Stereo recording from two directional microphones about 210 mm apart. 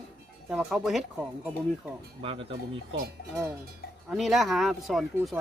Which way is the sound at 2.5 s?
55° right (ahead or behind).